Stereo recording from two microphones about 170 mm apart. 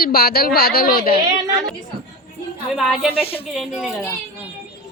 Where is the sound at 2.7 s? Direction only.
Centre (ahead or behind).